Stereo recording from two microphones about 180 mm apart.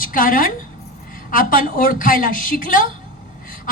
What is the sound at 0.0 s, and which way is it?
A woman's voice, 50° left (ahead or behind).